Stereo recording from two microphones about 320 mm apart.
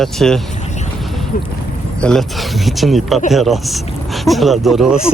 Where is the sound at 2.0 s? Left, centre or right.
Centre.